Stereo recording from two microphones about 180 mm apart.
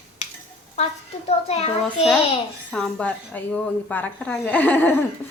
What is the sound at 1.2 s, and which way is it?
Speech, 35° left (ahead or behind).